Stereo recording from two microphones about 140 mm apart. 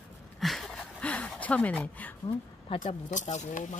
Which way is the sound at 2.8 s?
60° left (ahead or behind).